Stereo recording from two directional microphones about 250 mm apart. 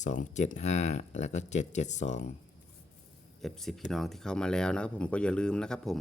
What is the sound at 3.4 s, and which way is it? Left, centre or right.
Speech, centre.